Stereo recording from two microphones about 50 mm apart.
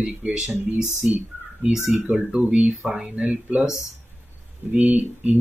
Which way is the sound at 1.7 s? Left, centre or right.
Centre.